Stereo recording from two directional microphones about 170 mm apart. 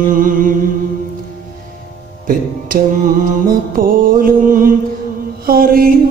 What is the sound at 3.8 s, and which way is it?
Mantra, 55° right (ahead or behind).